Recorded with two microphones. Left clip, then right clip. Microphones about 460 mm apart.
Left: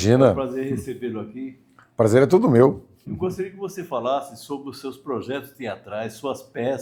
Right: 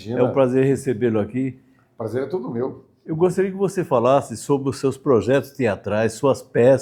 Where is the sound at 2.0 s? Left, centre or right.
Left.